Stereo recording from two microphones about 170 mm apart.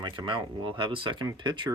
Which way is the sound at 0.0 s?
25° right (ahead or behind).